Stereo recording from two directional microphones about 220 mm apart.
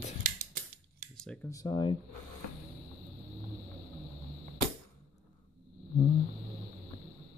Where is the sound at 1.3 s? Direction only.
15° left (ahead or behind).